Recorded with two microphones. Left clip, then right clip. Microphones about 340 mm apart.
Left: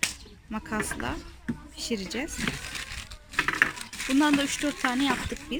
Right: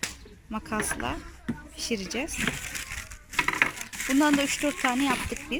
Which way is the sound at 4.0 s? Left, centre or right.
Centre.